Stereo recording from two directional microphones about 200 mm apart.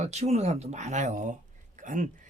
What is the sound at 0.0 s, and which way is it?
Speech, 35° right (ahead or behind).